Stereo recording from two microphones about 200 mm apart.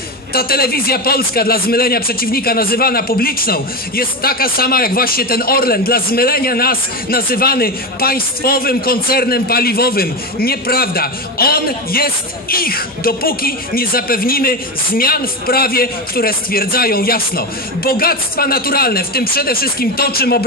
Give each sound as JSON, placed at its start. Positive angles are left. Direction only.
{"t": 0.3, "sound": "a man's voice", "side_deg": 50}